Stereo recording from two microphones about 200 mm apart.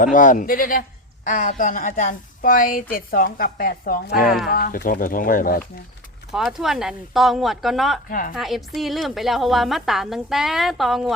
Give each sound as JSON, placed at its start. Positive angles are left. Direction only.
{"t": 0.0, "sound": "a man's voice", "side_deg": 40}
{"t": 6.3, "sound": "a woman's voice", "side_deg": 0}